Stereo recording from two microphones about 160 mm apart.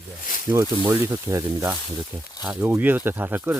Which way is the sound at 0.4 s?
20° right (ahead or behind).